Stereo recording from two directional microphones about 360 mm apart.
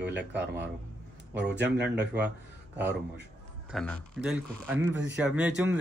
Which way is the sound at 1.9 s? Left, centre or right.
Centre.